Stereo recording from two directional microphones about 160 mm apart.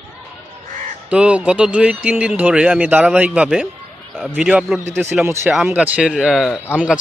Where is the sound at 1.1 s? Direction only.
5° right (ahead or behind).